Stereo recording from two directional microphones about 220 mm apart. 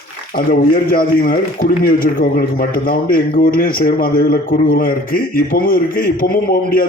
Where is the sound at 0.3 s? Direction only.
40° left (ahead or behind).